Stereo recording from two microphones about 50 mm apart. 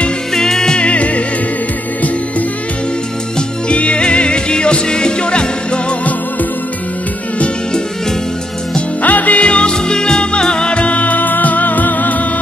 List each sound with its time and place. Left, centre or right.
0.3 s music: centre; by 1.2 s left
3.3 s music: left
9.0 s music: left